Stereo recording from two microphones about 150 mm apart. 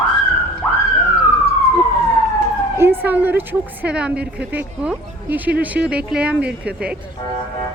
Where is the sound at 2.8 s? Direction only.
15° right (ahead or behind).